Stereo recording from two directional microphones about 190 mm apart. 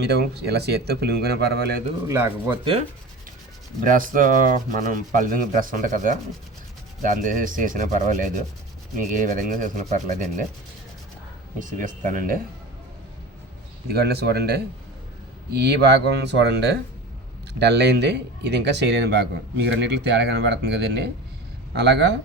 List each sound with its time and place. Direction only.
0.0 s speech: 60° right (ahead or behind)
2.0 s speech: 15° right (ahead or behind)
3.8 s rub: 45° right (ahead or behind)
11.6 s rub: 45° right (ahead or behind)
13.9 s speech: 55° right (ahead or behind)